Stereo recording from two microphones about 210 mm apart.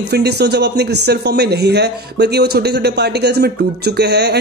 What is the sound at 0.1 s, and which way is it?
A man's voice, 50° right (ahead or behind).